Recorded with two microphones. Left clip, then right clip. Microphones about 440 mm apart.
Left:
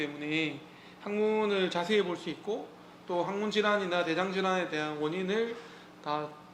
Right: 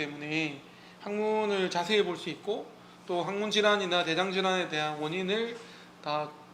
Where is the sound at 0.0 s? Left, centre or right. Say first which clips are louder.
Even; centre.